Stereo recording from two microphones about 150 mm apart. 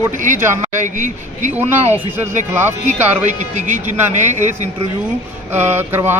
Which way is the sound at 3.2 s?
55° right (ahead or behind).